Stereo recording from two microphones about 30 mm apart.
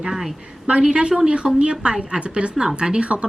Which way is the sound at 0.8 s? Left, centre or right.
Right.